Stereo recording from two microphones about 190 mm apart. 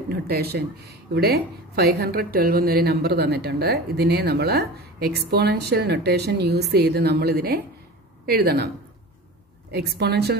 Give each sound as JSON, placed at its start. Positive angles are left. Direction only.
{"t": 0.1, "sound": "speech", "side_deg": -55}
{"t": 9.7, "sound": "speech", "side_deg": -60}